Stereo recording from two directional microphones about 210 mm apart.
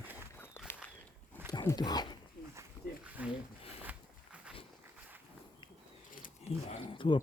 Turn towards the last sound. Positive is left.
turn(degrees=25)  # may be behind; listen again after turning